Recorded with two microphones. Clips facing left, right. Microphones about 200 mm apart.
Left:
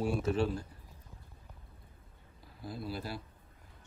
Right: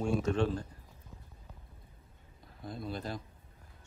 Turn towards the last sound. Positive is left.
turn(degrees=5)  # may be behind; listen again after turning